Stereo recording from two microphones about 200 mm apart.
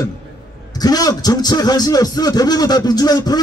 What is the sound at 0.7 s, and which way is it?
A man's voice, 20° left (ahead or behind).